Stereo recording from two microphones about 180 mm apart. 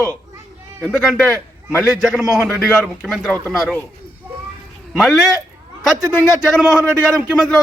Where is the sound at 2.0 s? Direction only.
Centre (ahead or behind).